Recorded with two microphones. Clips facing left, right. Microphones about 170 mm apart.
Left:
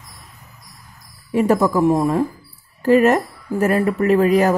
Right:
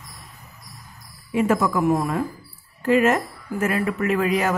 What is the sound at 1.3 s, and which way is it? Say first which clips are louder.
A woman's voice: left 4 dB; 35° left (ahead or behind).